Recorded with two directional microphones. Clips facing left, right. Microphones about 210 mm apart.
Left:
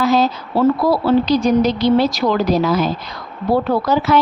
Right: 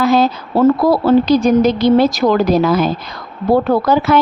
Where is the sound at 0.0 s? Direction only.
55° right (ahead or behind).